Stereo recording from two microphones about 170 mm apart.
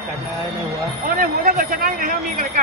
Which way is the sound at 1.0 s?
60° right (ahead or behind).